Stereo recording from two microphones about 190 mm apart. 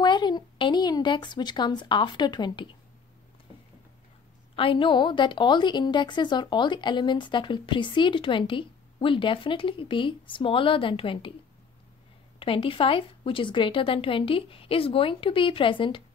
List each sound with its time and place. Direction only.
0.0 s a woman's voice: 25° left (ahead or behind)
4.6 s a woman's voice: 25° left (ahead or behind)
12.4 s a woman's voice: 30° left (ahead or behind)